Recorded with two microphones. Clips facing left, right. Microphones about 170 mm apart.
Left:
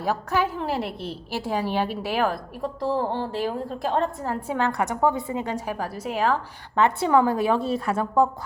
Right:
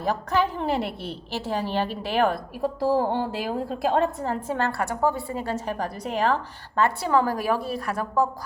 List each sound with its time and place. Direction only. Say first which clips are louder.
0.0 s a woman's voice: even; 10° left (ahead or behind)
1.3 s a woman's voice: left 1 dB; 10° left (ahead or behind)
6.7 s a woman's voice: left 2 dB; 20° left (ahead or behind)